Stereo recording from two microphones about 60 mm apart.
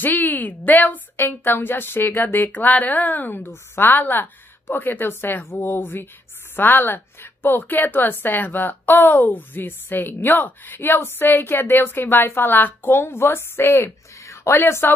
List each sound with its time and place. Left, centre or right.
0.0 s a woman's voice: left
14.5 s a woman's voice: left